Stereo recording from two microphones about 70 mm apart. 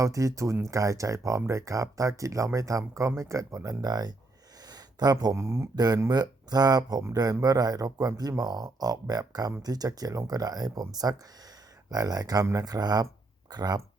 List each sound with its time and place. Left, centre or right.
0.0 s speech: right
4.6 s a sound: right
5.3 s speech: right
5.7 s speech: right